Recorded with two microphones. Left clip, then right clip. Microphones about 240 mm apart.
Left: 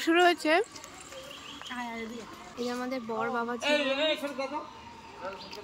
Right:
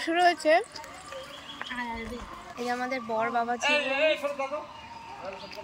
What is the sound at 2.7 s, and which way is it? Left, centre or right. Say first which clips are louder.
Speech: right 5 dB; centre.